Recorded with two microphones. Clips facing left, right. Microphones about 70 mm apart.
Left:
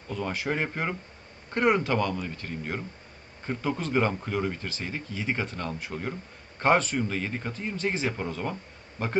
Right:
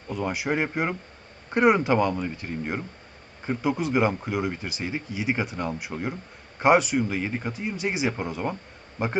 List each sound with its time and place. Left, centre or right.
0.1 s speech: centre